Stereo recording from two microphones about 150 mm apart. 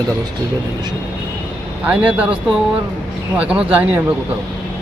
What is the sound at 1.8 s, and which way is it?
Speech, 10° right (ahead or behind).